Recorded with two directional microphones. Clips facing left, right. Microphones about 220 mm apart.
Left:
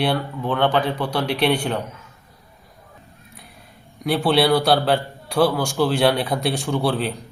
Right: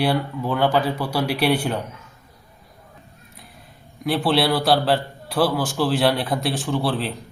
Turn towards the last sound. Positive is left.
turn(degrees=0)  # may be behind; listen again after turning